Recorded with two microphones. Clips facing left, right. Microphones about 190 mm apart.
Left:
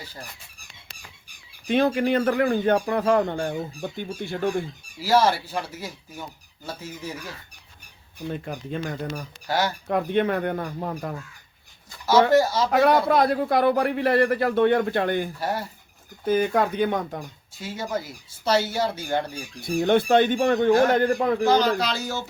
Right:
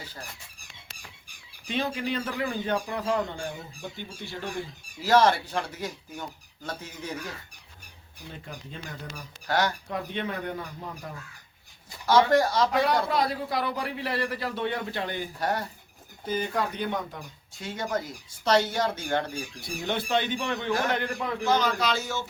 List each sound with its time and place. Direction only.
1.6 s speech: 55° left (ahead or behind)
4.9 s speech: 10° left (ahead or behind)
8.3 s speech: 60° left (ahead or behind)
9.5 s speech: 5° left (ahead or behind)
9.9 s speech: 60° left (ahead or behind)
12.3 s speech: 5° left (ahead or behind)
12.8 s speech: 55° left (ahead or behind)
15.4 s speech: 5° left (ahead or behind)
16.2 s speech: 55° left (ahead or behind)
17.6 s speech: 5° left (ahead or behind)
19.6 s a man's voice: 55° left (ahead or behind); by 22.2 s 35° left (ahead or behind)